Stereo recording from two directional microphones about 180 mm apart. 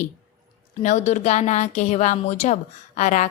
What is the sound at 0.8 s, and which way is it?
A woman's voice, 40° left (ahead or behind).